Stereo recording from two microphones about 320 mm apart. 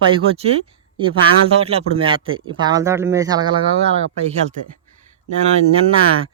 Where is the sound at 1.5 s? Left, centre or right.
Centre.